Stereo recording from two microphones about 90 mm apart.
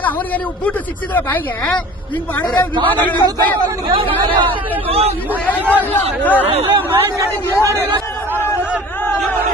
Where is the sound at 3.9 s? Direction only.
90° right.